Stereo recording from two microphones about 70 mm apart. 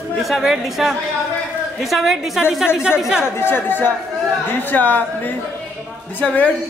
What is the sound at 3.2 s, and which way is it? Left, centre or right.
Speech, left.